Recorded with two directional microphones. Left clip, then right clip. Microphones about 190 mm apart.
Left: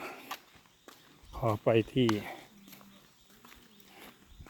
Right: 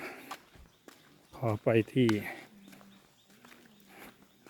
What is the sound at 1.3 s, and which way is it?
Speech, 5° right (ahead or behind).